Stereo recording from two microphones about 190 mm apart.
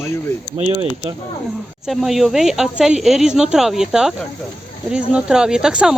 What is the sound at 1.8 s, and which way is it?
Speech, centre (ahead or behind).